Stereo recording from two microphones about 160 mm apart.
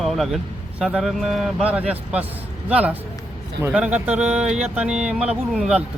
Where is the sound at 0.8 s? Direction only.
5° right (ahead or behind).